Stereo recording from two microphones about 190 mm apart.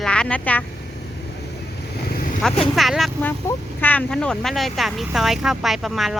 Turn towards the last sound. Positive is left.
turn(degrees=0)  # may be behind; listen again after turning